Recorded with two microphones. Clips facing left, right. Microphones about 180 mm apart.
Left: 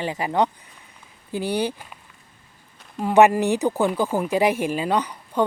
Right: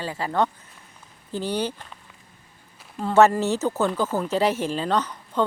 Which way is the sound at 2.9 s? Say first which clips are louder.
Left 2 dB; 15° left (ahead or behind).